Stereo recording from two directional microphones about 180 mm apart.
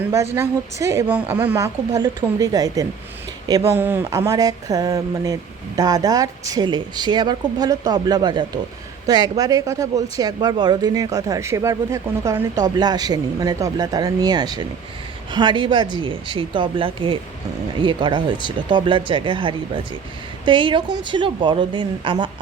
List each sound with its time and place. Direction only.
0.0 s a woman's voice: 15° right (ahead or behind)